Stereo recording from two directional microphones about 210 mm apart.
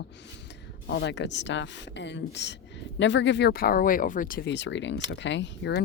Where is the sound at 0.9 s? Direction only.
55° left (ahead or behind).